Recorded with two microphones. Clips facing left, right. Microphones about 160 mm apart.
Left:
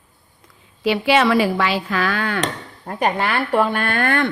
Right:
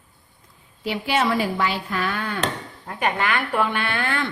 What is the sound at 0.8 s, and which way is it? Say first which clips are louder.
A woman's voice: left 6 dB; 90° left.